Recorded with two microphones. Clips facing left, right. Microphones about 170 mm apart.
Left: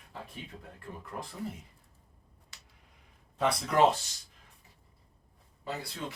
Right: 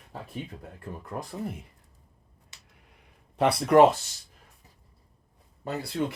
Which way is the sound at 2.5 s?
20° right (ahead or behind).